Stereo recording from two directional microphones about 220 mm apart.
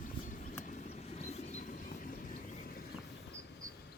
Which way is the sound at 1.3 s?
30° left (ahead or behind).